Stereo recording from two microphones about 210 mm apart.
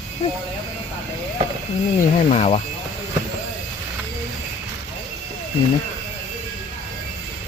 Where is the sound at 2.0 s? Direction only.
30° left (ahead or behind).